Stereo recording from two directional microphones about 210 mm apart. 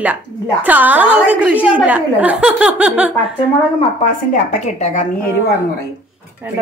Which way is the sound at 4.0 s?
35° left (ahead or behind).